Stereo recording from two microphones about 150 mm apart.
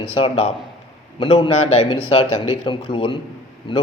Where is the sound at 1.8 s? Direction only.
35° left (ahead or behind).